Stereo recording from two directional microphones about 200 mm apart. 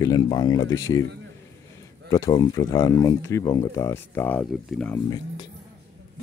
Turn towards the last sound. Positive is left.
turn(degrees=5)  # may be behind; listen again after turning